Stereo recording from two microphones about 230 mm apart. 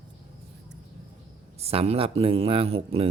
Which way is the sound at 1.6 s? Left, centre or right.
Right.